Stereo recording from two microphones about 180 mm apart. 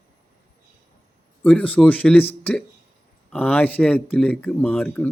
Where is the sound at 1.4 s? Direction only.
10° left (ahead or behind).